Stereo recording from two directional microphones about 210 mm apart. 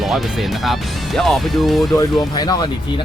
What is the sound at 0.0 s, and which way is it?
Speech, centre (ahead or behind).